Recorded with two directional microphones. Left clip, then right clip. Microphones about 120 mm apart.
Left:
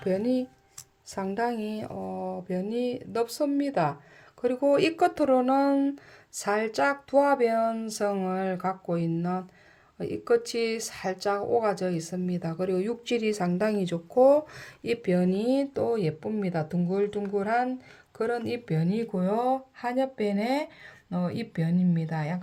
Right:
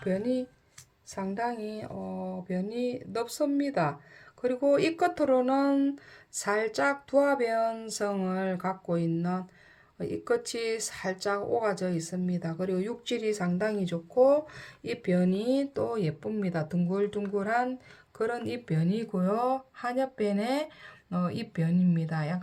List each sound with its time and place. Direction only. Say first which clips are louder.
0.0 s mantra: left 3 dB; 30° left (ahead or behind)
6.3 s speech: left 1 dB; 15° left (ahead or behind)